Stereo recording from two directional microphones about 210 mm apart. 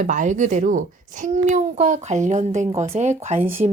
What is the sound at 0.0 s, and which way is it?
A woman's voice, 35° right (ahead or behind).